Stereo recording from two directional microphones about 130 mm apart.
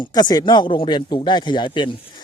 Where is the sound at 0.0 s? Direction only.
30° left (ahead or behind).